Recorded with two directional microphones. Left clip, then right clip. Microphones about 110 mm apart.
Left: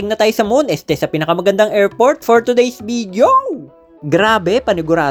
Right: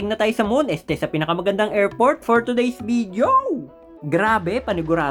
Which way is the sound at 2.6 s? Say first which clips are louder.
Left 2 dB; 30° left (ahead or behind).